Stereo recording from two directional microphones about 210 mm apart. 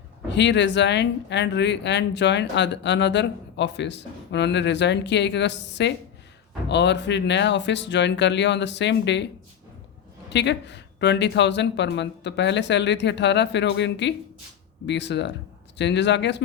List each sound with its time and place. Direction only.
0.3 s speech: 55° left (ahead or behind)
10.2 s speech: 55° left (ahead or behind)